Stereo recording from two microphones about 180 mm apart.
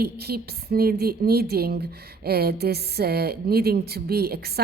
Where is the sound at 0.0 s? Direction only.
60° right (ahead or behind).